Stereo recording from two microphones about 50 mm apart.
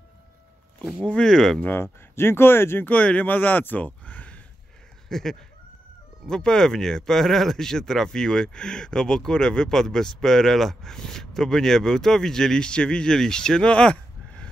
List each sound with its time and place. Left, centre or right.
1.0 s speech: left
1.3 s speech: centre
1.8 s speech: left
2.8 s speech: left
5.1 s speech: centre